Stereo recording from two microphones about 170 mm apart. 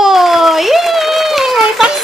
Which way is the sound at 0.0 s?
Centre (ahead or behind).